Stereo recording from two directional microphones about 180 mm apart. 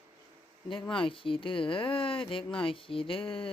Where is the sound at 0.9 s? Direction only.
30° left (ahead or behind).